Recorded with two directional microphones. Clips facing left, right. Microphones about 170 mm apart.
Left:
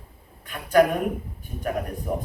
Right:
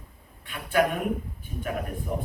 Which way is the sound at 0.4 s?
40° left (ahead or behind).